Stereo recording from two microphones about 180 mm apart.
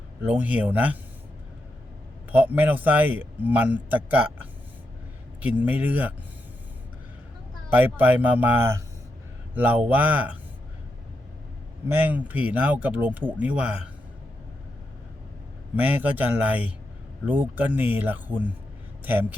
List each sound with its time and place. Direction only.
0.2 s speech: 10° right (ahead or behind)
2.3 s speech: 10° right (ahead or behind)
5.4 s speech: 10° right (ahead or behind)
7.7 s speech: 10° right (ahead or behind)
11.9 s speech: 10° right (ahead or behind)
15.7 s speech: 10° right (ahead or behind)